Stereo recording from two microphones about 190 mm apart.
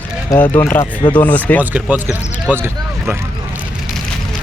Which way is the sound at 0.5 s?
10° left (ahead or behind).